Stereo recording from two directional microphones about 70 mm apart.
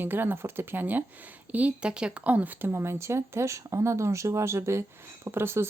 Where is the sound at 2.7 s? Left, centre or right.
Right.